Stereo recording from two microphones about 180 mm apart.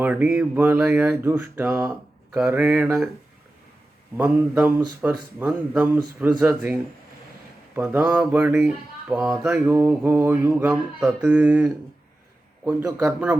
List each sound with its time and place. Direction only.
0.0 s speech: 10° right (ahead or behind)
4.2 s speech: 10° right (ahead or behind)
7.8 s speech: 10° right (ahead or behind)